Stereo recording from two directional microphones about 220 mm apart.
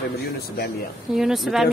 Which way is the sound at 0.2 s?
45° left (ahead or behind).